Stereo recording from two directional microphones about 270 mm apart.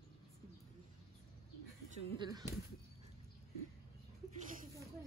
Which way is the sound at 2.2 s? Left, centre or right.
Centre.